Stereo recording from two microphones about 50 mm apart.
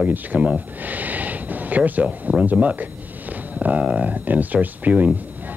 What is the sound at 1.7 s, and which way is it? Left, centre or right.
Speech, right.